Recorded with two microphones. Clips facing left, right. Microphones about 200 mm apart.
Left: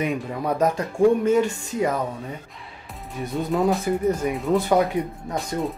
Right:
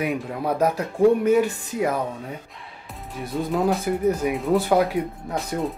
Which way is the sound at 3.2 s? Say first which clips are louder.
Left 1 dB; centre (ahead or behind).